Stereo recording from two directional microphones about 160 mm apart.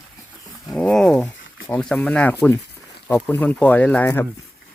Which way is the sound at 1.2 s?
10° left (ahead or behind).